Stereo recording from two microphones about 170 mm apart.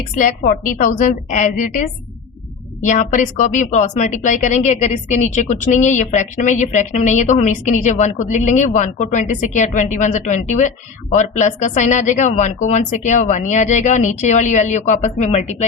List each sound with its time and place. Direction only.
0.2 s speech: 55° left (ahead or behind)